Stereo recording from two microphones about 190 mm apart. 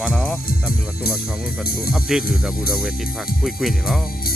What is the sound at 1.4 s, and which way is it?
Speech, 50° left (ahead or behind).